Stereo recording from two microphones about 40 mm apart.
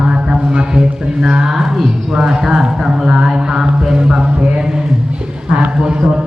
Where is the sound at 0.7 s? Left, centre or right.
Centre.